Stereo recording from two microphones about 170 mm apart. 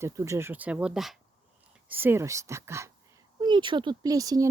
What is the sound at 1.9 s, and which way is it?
Speech, 10° right (ahead or behind).